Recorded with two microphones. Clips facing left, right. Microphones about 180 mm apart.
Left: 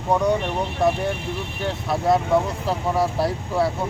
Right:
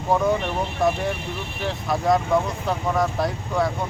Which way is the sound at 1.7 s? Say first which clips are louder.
Left 1 dB; centre (ahead or behind).